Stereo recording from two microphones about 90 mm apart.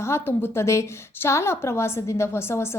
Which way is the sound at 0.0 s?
25° left (ahead or behind).